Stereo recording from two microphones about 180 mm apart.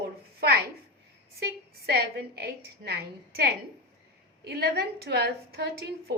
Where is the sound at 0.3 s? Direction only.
60° right (ahead or behind).